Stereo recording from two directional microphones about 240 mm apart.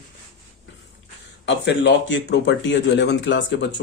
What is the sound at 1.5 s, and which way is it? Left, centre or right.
Speech, left.